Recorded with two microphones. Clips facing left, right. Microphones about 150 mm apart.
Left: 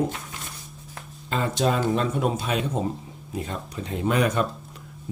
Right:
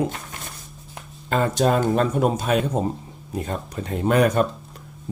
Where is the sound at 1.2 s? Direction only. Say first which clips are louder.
Right 4 dB; 50° right (ahead or behind).